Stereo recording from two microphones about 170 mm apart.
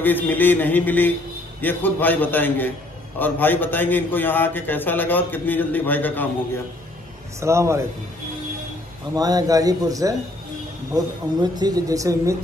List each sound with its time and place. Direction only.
0.0 s a man's voice: 10° left (ahead or behind)
7.3 s a man's voice: 15° right (ahead or behind)
9.1 s a man's voice: 20° right (ahead or behind)
11.5 s a man's voice: 25° right (ahead or behind)